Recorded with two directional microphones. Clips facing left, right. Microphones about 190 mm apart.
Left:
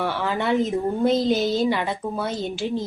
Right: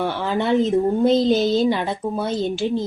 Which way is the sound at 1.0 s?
5° left (ahead or behind).